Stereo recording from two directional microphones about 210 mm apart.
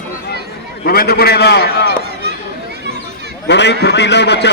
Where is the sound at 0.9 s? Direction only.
45° left (ahead or behind).